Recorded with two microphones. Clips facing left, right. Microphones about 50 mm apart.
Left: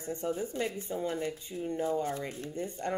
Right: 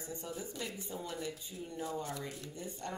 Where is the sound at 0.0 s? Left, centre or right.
Left.